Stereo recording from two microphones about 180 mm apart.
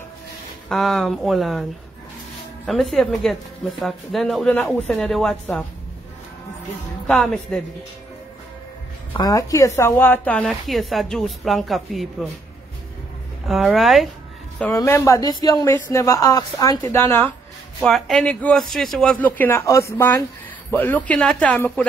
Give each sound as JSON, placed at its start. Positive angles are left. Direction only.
{"t": 0.7, "sound": "a woman's voice", "side_deg": 0}
{"t": 7.1, "sound": "a woman's voice", "side_deg": 5}
{"t": 9.1, "sound": "a woman's voice", "side_deg": 20}
{"t": 13.5, "sound": "a woman's voice", "side_deg": 0}
{"t": 14.7, "sound": "a man's voice", "side_deg": 15}
{"t": 17.8, "sound": "a man's voice", "side_deg": 0}